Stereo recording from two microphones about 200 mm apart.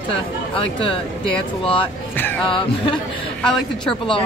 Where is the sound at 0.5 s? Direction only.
25° left (ahead or behind).